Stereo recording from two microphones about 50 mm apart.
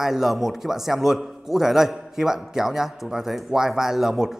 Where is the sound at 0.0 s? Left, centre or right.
Centre.